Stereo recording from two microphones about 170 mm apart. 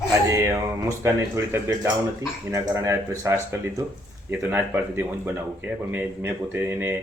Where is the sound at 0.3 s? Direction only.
15° right (ahead or behind).